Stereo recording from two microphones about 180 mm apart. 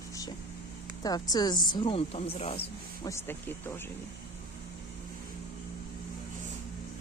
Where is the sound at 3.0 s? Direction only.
15° left (ahead or behind).